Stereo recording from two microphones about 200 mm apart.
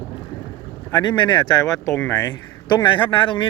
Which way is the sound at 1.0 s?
25° left (ahead or behind).